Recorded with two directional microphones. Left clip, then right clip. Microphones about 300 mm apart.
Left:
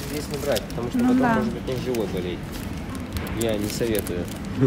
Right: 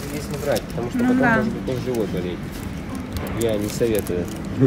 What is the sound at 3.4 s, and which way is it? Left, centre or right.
Speech, centre.